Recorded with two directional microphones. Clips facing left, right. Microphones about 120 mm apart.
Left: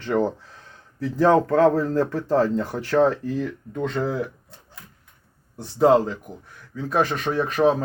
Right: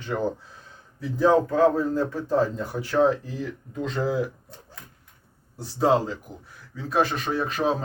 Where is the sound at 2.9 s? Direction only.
60° left (ahead or behind).